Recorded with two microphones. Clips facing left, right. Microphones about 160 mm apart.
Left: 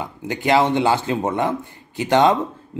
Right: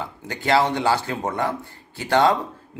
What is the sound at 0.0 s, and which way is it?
A man's voice, 15° left (ahead or behind).